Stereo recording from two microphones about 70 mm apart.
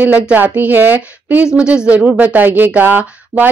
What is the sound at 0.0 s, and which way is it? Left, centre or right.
Speech, right.